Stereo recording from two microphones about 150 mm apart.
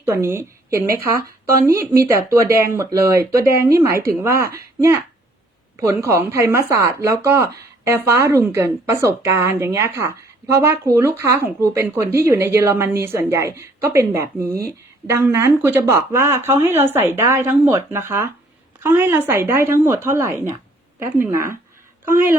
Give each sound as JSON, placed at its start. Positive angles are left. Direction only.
{"t": 0.0, "sound": "a woman's voice", "side_deg": -15}